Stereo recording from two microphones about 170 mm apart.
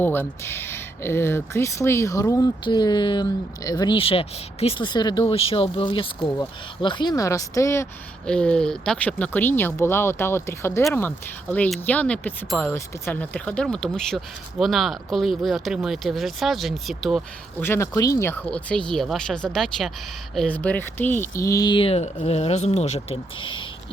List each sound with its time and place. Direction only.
0.0 s speech: 10° left (ahead or behind)
8.3 s speech: 5° left (ahead or behind)
17.6 s speech: 15° left (ahead or behind); by 23.6 s 30° left (ahead or behind)